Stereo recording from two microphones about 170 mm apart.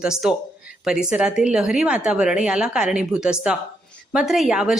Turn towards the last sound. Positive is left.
turn(degrees=-5)  # may be behind; listen again after turning